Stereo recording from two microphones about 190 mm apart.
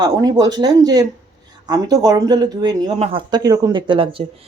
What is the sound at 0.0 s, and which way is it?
Speech, 20° right (ahead or behind).